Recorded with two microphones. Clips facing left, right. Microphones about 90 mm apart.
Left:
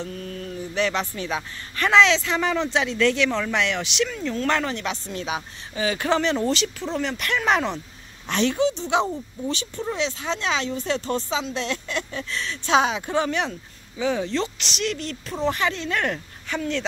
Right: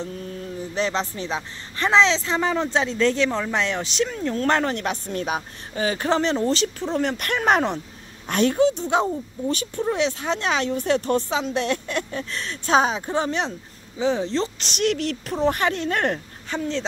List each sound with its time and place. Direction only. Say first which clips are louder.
0.0 s speech: right 1 dB; 25° right (ahead or behind); by 8.7 s 45° right (ahead or behind)
9.9 s speech: right 3 dB; 55° right (ahead or behind); by 14.7 s 30° right (ahead or behind)
14.7 s speech: right 5 dB; 55° right (ahead or behind)
15.4 s speech: right 2 dB; 50° right (ahead or behind); by 16.8 s 30° right (ahead or behind)